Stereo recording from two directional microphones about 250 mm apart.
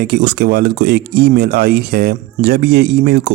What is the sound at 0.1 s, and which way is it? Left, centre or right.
Speech, right.